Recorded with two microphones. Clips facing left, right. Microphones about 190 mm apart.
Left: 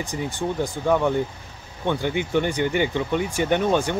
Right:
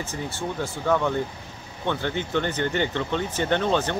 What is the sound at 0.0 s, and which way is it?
Speech, 15° left (ahead or behind).